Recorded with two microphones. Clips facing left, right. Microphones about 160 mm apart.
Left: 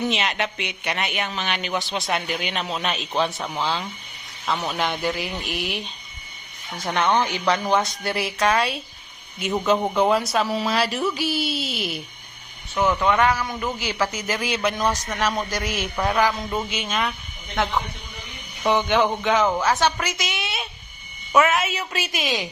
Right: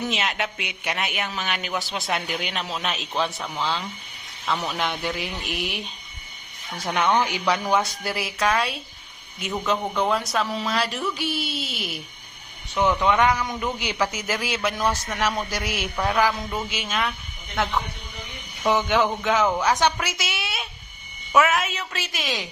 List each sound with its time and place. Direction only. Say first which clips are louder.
0.0 s speech: left 2 dB; centre (ahead or behind)
3.3 s speech: left 3 dB; 15° left (ahead or behind)
3.6 s speech: left 1 dB; centre (ahead or behind)
6.9 s a man's voice: left 1 dB; 10° right (ahead or behind)
13.1 s a man's voice: even; 10° right (ahead or behind)
14.8 s speech: left 1 dB; 15° left (ahead or behind)
15.4 s a man's voice: left 2 dB; 10° right (ahead or behind)
16.0 s speech: left 1 dB; centre (ahead or behind)